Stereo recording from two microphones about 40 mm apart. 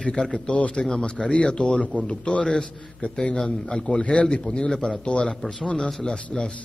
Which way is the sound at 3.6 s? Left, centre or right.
Left.